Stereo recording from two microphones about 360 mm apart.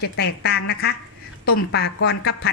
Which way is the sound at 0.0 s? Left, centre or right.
Left.